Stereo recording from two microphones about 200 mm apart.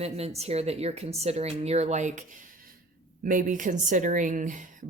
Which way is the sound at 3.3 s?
40° right (ahead or behind).